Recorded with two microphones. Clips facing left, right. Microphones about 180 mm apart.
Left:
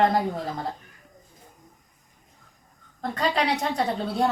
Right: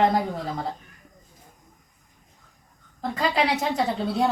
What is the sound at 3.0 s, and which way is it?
A woman's voice, 5° right (ahead or behind).